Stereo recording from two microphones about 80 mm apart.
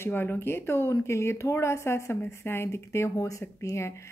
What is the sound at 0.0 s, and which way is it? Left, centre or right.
Speech, left.